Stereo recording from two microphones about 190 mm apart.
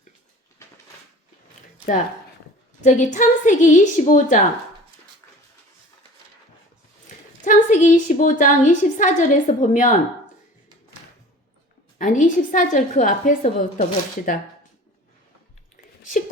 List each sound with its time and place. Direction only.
2.8 s a woman's voice: 40° left (ahead or behind)
7.4 s a woman's voice: 40° left (ahead or behind)
11.9 s a woman's voice: 40° left (ahead or behind)